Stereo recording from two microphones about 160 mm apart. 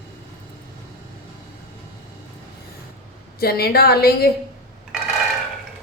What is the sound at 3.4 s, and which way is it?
Speech, 75° left (ahead or behind).